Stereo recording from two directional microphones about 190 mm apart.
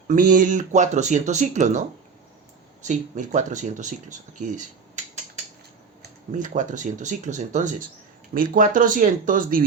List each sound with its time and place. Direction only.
0.1 s speech: 45° right (ahead or behind)
2.8 s speech: 40° right (ahead or behind)
6.0 s speech: 40° right (ahead or behind)